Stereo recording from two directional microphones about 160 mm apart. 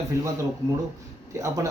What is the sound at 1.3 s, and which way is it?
Speech, 20° right (ahead or behind).